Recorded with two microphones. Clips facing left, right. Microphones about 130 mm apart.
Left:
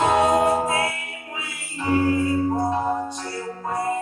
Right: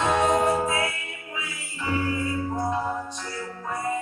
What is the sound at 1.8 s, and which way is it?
Music, 45° left (ahead or behind).